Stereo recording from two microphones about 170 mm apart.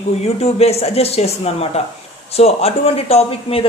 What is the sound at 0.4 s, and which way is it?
A woman's voice, 35° left (ahead or behind).